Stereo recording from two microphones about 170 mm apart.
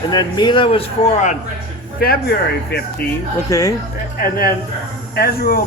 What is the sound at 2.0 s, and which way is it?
Speech, 65° left (ahead or behind).